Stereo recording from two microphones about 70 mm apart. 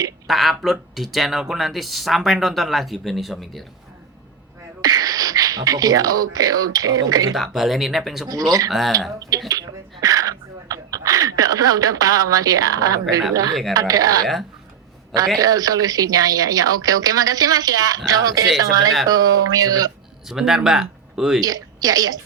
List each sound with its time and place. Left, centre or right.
0.3 s speech: centre
4.8 s speech: right
7.3 s speech: centre
8.3 s a woman's voice: right
9.5 s a sound: right
13.7 s a woman's voice: right
15.4 s a woman's voice: right
20.2 s speech: centre
21.4 s a woman's voice: right